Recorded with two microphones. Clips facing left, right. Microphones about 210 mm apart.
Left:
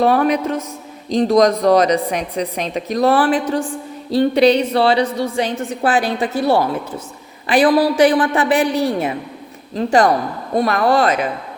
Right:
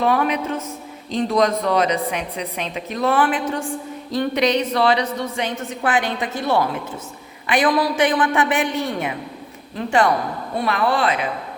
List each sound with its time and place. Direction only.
0.0 s a woman's voice: 40° left (ahead or behind)